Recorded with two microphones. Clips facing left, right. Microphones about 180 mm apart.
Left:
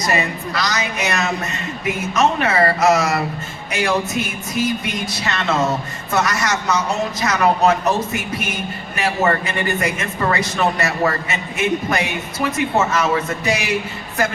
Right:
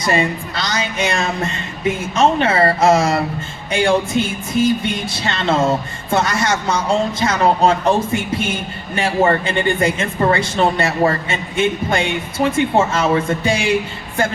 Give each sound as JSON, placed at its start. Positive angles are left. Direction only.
{"t": 0.1, "sound": "speech", "side_deg": -30}